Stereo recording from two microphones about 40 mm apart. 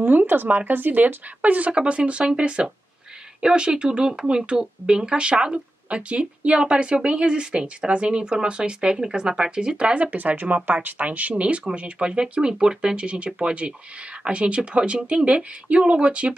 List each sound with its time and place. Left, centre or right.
0.0 s speech: right
10.1 s speech: right